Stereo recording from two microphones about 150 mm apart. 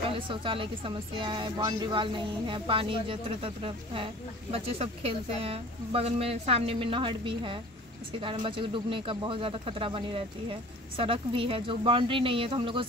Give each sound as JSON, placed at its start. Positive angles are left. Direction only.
{"t": 0.1, "sound": "a woman's voice", "side_deg": -35}